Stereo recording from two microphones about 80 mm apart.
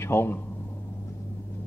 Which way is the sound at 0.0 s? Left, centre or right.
Left.